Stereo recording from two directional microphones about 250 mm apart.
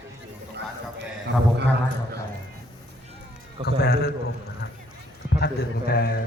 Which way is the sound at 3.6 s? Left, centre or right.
Left.